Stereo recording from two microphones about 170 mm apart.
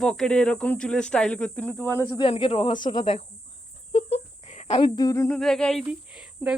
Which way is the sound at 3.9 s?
40° left (ahead or behind).